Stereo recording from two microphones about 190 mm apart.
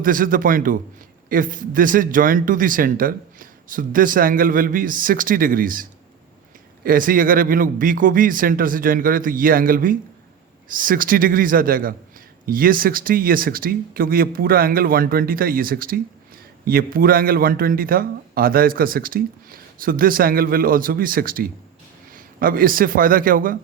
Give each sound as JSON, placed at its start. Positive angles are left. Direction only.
{"t": 0.0, "sound": "a man's voice", "side_deg": -45}